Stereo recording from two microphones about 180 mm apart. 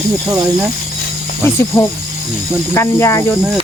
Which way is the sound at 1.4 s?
15° left (ahead or behind).